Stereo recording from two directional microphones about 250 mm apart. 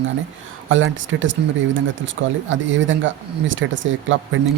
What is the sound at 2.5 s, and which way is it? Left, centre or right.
Speech, right.